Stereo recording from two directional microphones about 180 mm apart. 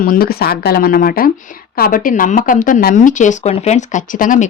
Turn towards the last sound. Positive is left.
turn(degrees=45)  # may be behind; listen again after turning